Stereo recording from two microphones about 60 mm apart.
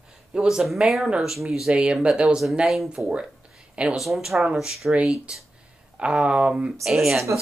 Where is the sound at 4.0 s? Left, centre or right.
Centre.